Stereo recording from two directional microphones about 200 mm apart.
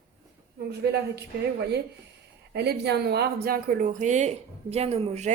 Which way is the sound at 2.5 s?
55° right (ahead or behind).